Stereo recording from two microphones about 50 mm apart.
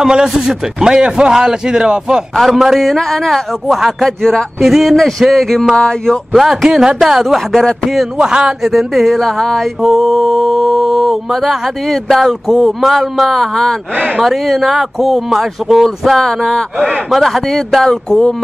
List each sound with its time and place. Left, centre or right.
0.0 s a man's voice: centre
2.3 s mantra: centre
4.2 s speech: centre
4.6 s mantra: centre
5.8 s speech: centre
6.3 s a man's voice: centre
7.5 s speech: centre
8.0 s a man's voice: centre
8.6 s mantra: centre
9.8 s mantra: centre